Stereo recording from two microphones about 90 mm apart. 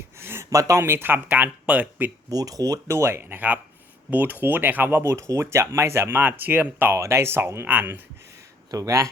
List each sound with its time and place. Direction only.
0.2 s speech: 25° right (ahead or behind)
2.3 s speech: 45° right (ahead or behind); by 8.0 s 20° right (ahead or behind)
8.7 s speech: 40° right (ahead or behind)